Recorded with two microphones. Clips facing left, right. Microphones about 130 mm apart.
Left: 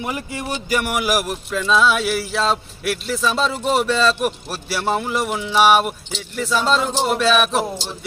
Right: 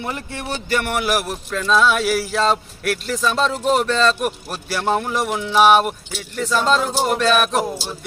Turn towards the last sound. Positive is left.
turn(degrees=5)  # may be behind; listen again after turning